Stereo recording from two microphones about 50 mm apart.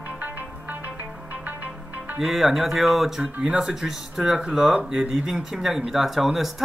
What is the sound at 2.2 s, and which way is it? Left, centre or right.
Speech, centre.